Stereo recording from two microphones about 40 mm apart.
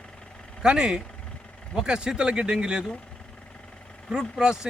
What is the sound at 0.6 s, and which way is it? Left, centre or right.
Speech, right.